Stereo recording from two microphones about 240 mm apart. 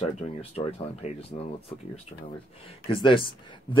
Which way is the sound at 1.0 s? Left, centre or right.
Left.